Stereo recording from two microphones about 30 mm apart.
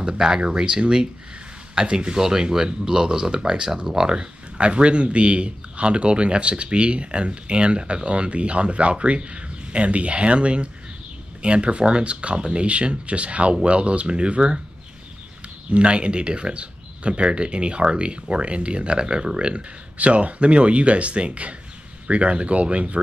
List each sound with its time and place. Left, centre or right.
0.0 s speech: right
2.1 s speech: centre; by 3.7 s right
3.7 s speech: centre
4.1 s speech: right
15.7 s speech: right
20.0 s speech: right